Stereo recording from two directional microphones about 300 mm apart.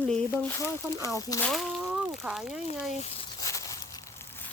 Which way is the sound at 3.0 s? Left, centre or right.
Centre.